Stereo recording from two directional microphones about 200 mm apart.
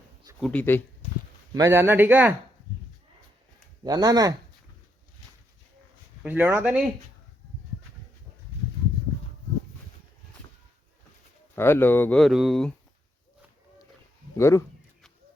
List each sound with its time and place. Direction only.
0.3 s speech: 5° left (ahead or behind)
1.5 s speech: 15° right (ahead or behind)
3.8 s speech: 20° right (ahead or behind)
6.2 s speech: 10° right (ahead or behind)
11.5 s speech: 10° left (ahead or behind)
14.3 s speech: 15° left (ahead or behind)